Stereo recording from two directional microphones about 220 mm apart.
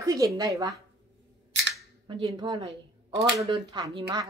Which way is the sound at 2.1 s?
25° right (ahead or behind).